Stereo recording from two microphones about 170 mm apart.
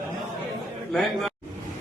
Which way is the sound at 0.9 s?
Centre (ahead or behind).